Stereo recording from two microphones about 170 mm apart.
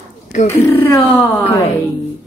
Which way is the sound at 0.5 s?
15° left (ahead or behind).